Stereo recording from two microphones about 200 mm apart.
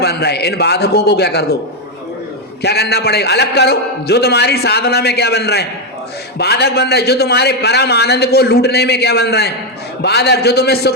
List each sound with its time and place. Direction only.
0.0 s a man's voice: 55° left (ahead or behind)
2.6 s a man's voice: 55° left (ahead or behind)